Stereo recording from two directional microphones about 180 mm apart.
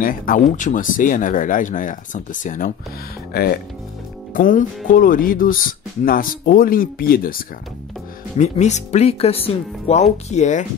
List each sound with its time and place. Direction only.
0.0 s speech: 50° left (ahead or behind)
3.3 s speech: 60° left (ahead or behind)
4.3 s speech: 45° left (ahead or behind)
8.4 s speech: 40° left (ahead or behind)